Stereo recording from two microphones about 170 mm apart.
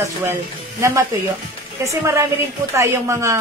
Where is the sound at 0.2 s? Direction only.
15° right (ahead or behind).